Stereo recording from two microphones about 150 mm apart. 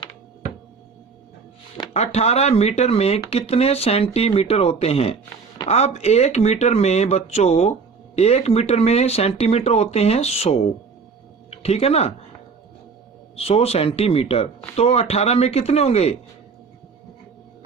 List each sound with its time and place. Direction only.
1.9 s speech: 45° left (ahead or behind)
13.3 s speech: 40° left (ahead or behind)